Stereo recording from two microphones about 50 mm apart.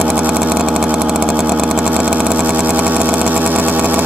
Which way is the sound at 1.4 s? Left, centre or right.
Centre.